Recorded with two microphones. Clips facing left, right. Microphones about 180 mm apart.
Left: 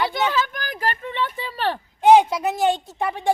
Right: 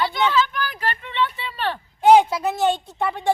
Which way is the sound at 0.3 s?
45° left (ahead or behind).